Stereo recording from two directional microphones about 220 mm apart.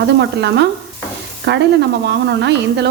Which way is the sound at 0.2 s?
50° right (ahead or behind).